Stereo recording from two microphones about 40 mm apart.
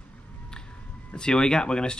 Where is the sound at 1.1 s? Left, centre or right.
Left.